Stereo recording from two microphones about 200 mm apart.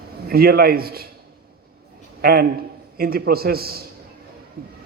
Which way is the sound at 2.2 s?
50° right (ahead or behind).